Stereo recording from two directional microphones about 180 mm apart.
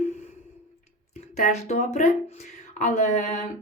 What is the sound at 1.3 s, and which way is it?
A woman's voice, 40° left (ahead or behind).